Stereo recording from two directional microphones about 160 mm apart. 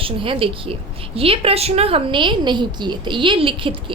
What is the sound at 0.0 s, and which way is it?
A woman's voice, 35° right (ahead or behind).